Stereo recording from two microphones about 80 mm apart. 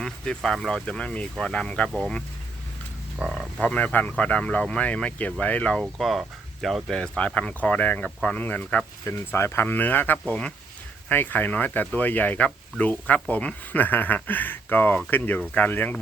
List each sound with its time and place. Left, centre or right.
0.0 s speech: centre
3.2 s frog: centre
3.6 s speech: centre
6.0 s speech: centre
7.2 s speech: centre
9.0 s speech: left